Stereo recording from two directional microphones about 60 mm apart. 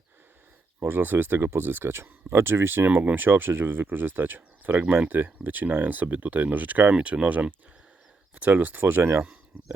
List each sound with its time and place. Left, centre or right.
0.9 s speech: right
6.9 s speech: centre